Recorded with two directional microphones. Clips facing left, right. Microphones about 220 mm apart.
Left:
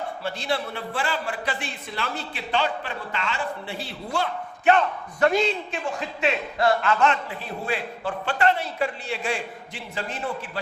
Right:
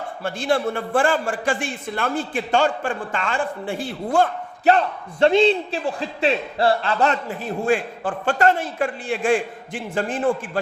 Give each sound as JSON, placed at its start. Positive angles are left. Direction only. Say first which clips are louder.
{"t": 0.2, "sound": "a man's voice", "louder": "right 8 dB", "side_deg": -50}